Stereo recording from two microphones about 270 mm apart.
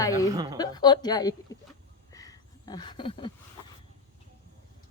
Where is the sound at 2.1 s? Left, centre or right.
Centre.